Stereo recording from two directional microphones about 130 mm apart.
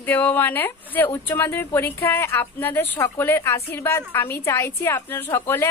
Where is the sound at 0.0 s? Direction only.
15° left (ahead or behind).